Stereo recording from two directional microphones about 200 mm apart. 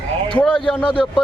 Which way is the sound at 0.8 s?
25° left (ahead or behind).